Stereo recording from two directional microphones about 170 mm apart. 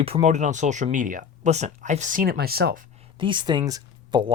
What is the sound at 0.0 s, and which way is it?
Speech, 40° right (ahead or behind).